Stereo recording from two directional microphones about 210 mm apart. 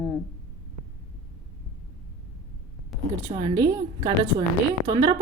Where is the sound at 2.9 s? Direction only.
Centre (ahead or behind).